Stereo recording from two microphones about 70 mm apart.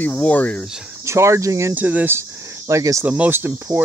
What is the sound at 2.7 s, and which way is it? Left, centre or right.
Speech, right.